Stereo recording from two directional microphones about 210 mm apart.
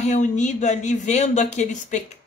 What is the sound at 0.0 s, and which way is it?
Speech, 35° left (ahead or behind).